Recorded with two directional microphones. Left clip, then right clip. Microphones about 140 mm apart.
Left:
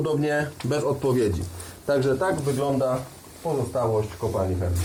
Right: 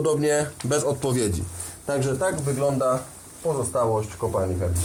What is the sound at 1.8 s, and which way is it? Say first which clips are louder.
Speech: left 2 dB; 20° right (ahead or behind).